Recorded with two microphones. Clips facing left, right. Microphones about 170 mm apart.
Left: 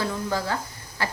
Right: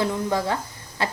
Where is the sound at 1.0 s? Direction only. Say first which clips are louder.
Right 3 dB; 25° right (ahead or behind).